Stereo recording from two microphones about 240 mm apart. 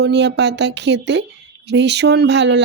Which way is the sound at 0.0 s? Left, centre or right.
Right.